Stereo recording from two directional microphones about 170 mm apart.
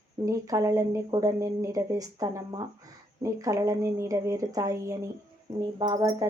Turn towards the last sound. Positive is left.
turn(degrees=-20)  # may be behind; listen again after turning